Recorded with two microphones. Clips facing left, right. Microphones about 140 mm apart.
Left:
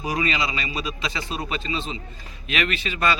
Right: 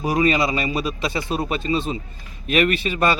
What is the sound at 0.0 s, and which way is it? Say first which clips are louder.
A man's voice: right 6 dB; 40° right (ahead or behind).